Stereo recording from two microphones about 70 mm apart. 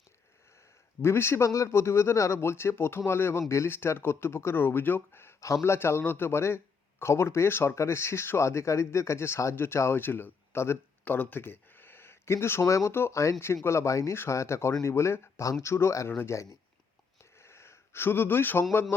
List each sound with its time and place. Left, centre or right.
1.0 s speech: left
11.0 s speech: left
17.3 s a sound: left
18.7 s speech: left